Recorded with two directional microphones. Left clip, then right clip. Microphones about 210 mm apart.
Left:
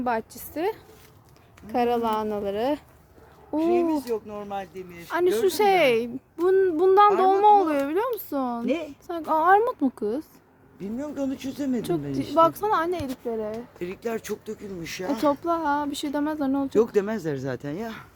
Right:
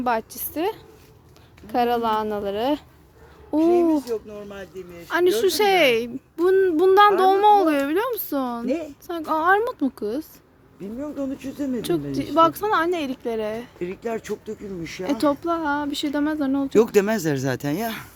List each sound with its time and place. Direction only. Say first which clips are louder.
0.0 s a woman's voice: right 3 dB; 5° right (ahead or behind)
4.3 s speech: left 3 dB; 50° left (ahead or behind)
5.0 s a woman's voice: right 3 dB; centre (ahead or behind)
8.6 s a woman's voice: right 1 dB; 10° left (ahead or behind)
10.8 s speech: right 1 dB; 35° left (ahead or behind)
11.8 s a woman's voice: right 3 dB; centre (ahead or behind); by 15.0 s 20° right (ahead or behind)
15.4 s a woman's voice: right 1 dB; 5° left (ahead or behind)
16.7 s speech: right 5 dB; 45° right (ahead or behind)